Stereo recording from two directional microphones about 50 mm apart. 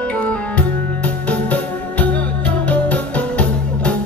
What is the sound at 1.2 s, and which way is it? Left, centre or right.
Music, left.